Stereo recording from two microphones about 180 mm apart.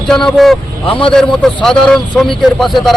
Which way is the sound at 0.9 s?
30° left (ahead or behind).